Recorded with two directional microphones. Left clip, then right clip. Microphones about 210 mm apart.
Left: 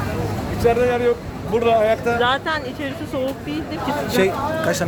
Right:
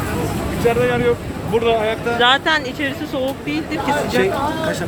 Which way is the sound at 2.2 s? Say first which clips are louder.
Right 5 dB; 5° right (ahead or behind).